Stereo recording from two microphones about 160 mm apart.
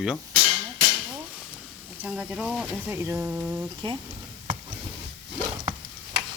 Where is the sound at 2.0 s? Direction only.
10° right (ahead or behind).